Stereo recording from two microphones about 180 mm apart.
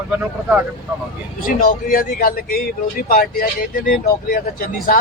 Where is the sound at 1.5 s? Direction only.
55° left (ahead or behind).